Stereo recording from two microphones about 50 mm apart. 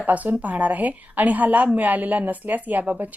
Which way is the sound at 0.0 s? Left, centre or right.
Right.